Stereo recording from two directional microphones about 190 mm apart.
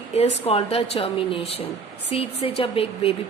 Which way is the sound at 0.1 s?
30° left (ahead or behind).